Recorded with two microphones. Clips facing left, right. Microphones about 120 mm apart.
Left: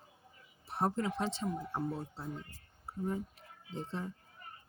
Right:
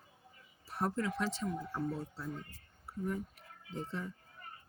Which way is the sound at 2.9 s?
25° left (ahead or behind).